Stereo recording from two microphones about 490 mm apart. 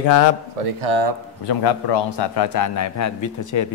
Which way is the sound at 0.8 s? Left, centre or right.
Right.